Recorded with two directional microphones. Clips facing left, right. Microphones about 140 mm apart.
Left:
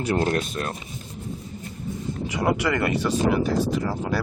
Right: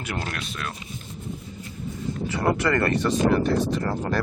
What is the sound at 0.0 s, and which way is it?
Speech, 30° left (ahead or behind).